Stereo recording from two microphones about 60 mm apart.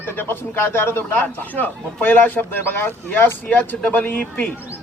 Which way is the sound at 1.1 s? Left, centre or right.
Left.